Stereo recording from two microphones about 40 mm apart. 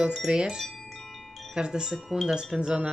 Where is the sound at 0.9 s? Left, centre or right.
Centre.